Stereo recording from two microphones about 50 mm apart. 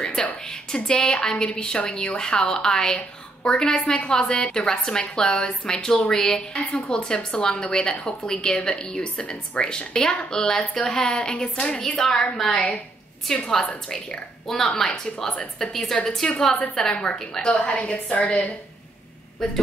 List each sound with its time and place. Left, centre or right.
0.2 s a woman's voice: centre
17.5 s a woman's voice: left
19.4 s a woman's voice: centre